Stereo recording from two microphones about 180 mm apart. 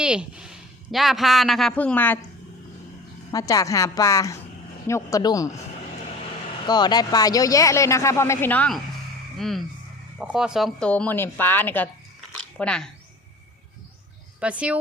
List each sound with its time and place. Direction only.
0.0 s a man's voice: 5° right (ahead or behind)
3.3 s a woman's voice: 20° left (ahead or behind)
6.7 s speech: 25° left (ahead or behind); by 12.9 s 5° left (ahead or behind)
14.4 s speech: 5° right (ahead or behind)